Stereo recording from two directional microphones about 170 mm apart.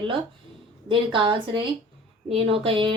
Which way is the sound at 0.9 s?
30° right (ahead or behind).